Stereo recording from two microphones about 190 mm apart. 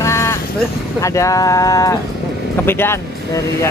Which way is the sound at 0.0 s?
15° left (ahead or behind).